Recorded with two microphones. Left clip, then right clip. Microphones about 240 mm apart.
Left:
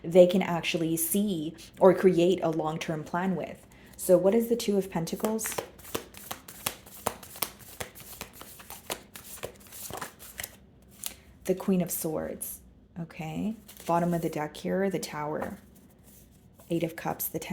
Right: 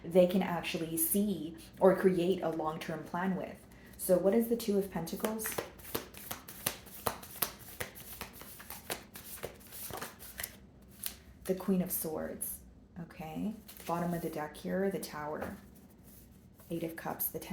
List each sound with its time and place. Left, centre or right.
0.1 s speech: left
5.2 s shuffling cards: left
9.9 s a sound: left
11.0 s shuffling cards: left
11.4 s speech: left
16.6 s speech: left